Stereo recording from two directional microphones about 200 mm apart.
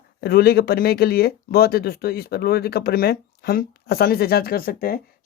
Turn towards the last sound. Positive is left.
turn(degrees=50)  # may be behind; listen again after turning